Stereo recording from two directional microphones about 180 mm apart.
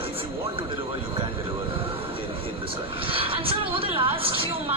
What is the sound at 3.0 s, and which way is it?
A woman's voice, 30° right (ahead or behind).